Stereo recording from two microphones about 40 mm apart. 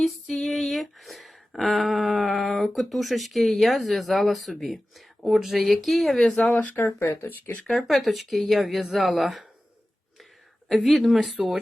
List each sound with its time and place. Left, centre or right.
0.0 s a sound: centre
6.5 s speech: left
6.7 s speech: left
7.7 s speech: centre
10.8 s speech: centre